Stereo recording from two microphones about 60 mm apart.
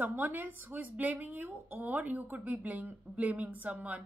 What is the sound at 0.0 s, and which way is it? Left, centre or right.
Speech, right.